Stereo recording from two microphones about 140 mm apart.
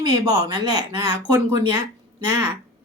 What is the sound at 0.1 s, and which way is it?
Speech, 30° right (ahead or behind).